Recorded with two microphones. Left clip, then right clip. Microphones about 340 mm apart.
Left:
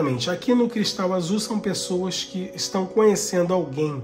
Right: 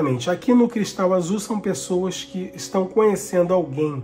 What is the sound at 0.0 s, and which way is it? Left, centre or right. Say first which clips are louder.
Speech: right 2 dB; centre.